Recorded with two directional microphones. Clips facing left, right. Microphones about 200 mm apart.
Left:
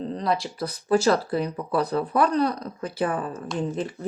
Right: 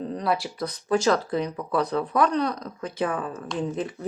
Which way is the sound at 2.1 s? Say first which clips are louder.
Even; 35° left (ahead or behind).